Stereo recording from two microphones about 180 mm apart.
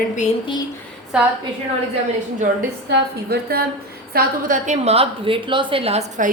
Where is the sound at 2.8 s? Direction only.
60° right (ahead or behind).